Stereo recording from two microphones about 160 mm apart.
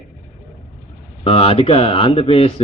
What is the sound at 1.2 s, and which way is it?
A man's voice, 35° left (ahead or behind).